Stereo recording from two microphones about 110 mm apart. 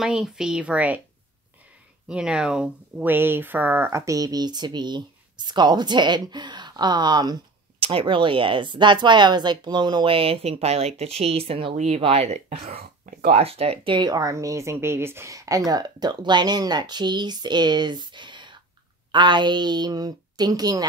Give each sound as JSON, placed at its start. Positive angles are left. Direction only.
{"t": 0.0, "sound": "speech", "side_deg": -5}
{"t": 2.0, "sound": "speech", "side_deg": -10}
{"t": 7.8, "sound": "a woman's voice", "side_deg": -50}
{"t": 12.0, "sound": "speech", "side_deg": -65}
{"t": 13.9, "sound": "speech", "side_deg": -40}